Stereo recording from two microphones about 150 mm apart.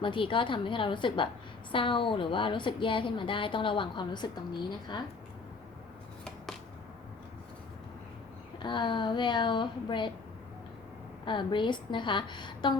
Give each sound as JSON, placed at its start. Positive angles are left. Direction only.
{"t": 0.0, "sound": "a woman's voice", "side_deg": 35}
{"t": 8.5, "sound": "a woman's voice", "side_deg": 30}
{"t": 11.3, "sound": "a woman's voice", "side_deg": 30}